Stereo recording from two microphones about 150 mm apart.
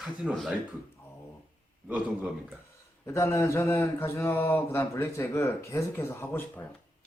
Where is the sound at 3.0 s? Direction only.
20° left (ahead or behind).